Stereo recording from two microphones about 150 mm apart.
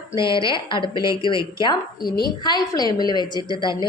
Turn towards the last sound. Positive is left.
turn(degrees=30)  # may be behind; listen again after turning